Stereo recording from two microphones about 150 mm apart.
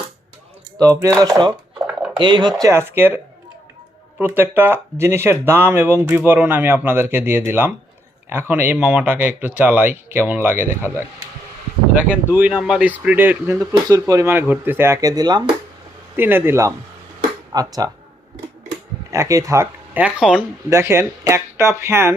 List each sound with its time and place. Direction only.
0.8 s speech: 20° right (ahead or behind)
4.2 s speech: 15° right (ahead or behind)
11.9 s speech: 10° right (ahead or behind); by 15.4 s 25° right (ahead or behind)
16.1 s speech: 15° right (ahead or behind)
17.2 s music: 25° right (ahead or behind)
19.1 s speech: 20° right (ahead or behind); by 20.4 s 5° right (ahead or behind)
20.7 s speech: 20° right (ahead or behind)